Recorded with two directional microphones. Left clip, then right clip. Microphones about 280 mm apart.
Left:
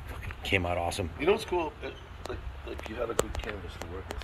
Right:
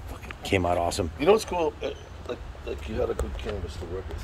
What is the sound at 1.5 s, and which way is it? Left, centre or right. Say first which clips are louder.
Speech: right 5 dB; right.